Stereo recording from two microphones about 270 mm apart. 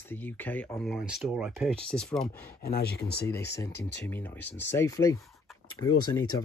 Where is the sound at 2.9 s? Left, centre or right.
Left.